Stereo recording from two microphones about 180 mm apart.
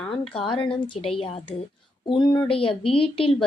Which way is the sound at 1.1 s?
30° left (ahead or behind).